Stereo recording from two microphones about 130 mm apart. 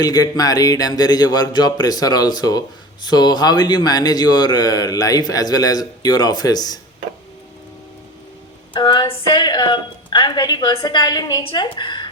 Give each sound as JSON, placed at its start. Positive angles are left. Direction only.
{"t": 0.0, "sound": "speech", "side_deg": 30}
{"t": 8.7, "sound": "speech", "side_deg": 35}